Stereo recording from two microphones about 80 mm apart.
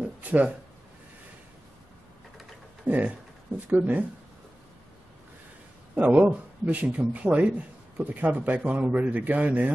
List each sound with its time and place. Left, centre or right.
0.2 s speech: centre
2.9 s speech: centre
5.9 s a man's voice: centre